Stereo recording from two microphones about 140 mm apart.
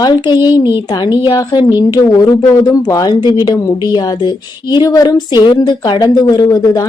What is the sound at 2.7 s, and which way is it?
Female singing, 25° left (ahead or behind).